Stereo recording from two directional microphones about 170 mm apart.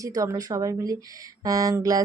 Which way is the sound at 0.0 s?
20° right (ahead or behind).